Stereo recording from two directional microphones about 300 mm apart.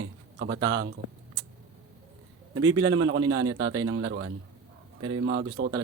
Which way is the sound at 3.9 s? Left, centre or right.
Right.